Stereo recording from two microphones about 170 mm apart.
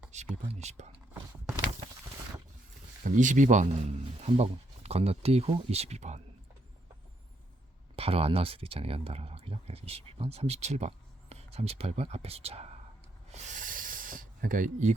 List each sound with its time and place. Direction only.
0.1 s speech: 40° right (ahead or behind)
3.0 s speech: 50° right (ahead or behind)
7.9 s speech: 35° right (ahead or behind)
13.3 s a sound: 50° right (ahead or behind)